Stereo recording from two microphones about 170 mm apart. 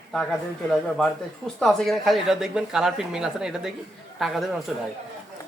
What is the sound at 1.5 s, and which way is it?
Speech, centre (ahead or behind).